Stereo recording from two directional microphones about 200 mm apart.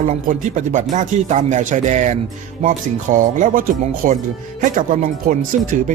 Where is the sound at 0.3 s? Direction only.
40° right (ahead or behind).